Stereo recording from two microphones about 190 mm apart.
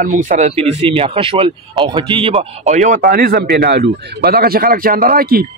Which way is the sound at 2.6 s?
40° right (ahead or behind).